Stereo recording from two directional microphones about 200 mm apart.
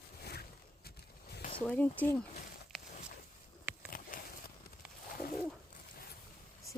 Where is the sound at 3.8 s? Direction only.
45° left (ahead or behind).